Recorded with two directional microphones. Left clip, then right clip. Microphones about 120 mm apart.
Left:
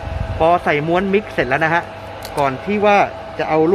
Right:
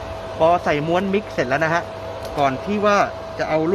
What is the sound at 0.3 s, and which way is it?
A man's voice, 5° left (ahead or behind).